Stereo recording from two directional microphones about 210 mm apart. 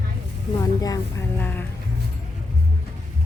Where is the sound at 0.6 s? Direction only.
15° left (ahead or behind).